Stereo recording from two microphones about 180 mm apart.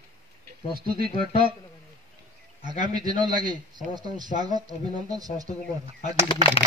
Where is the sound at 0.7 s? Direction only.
55° right (ahead or behind).